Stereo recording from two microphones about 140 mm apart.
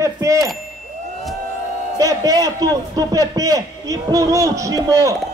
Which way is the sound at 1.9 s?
25° right (ahead or behind).